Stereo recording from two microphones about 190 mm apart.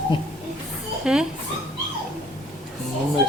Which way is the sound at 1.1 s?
5° right (ahead or behind).